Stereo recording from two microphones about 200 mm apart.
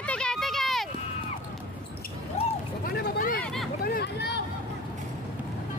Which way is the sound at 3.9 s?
50° left (ahead or behind).